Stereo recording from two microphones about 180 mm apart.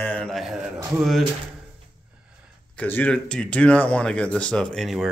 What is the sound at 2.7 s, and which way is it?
Speech, 10° left (ahead or behind).